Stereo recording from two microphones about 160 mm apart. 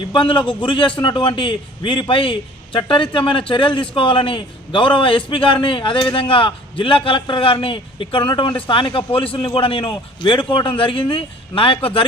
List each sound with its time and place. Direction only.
0.0 s a man's voice: 30° left (ahead or behind)